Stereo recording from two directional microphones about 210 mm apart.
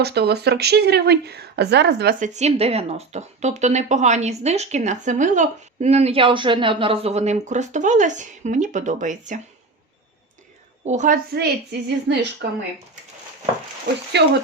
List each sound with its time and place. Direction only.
0.0 s speech: 50° right (ahead or behind)
10.8 s a woman's voice: 35° right (ahead or behind); by 12.5 s 55° right (ahead or behind)
14.1 s a woman's voice: 55° right (ahead or behind)